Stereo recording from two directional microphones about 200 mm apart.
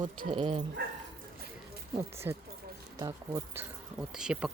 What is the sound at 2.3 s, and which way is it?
Speech, 10° right (ahead or behind).